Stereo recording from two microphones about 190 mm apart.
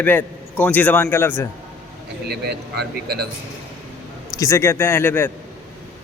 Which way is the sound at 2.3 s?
60° right (ahead or behind).